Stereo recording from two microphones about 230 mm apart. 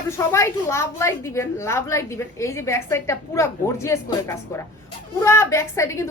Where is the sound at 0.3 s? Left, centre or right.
Centre.